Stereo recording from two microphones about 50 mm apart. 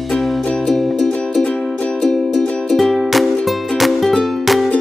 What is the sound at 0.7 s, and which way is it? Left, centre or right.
Music, centre.